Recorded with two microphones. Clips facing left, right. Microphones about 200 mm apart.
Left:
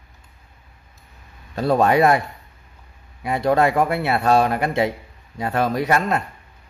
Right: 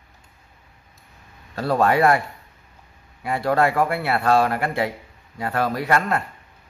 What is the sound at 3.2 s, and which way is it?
Speech, 20° left (ahead or behind).